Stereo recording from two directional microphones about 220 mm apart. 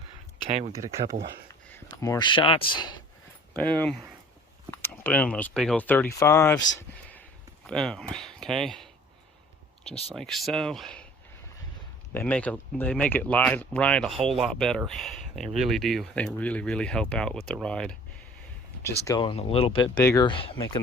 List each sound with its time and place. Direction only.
1.7 s speech: 15° left (ahead or behind)
3.5 s speech: 5° left (ahead or behind)
7.7 s speech: centre (ahead or behind)
10.2 s speech: centre (ahead or behind)
12.1 s speech: 5° left (ahead or behind)
19.0 s speech: 20° left (ahead or behind)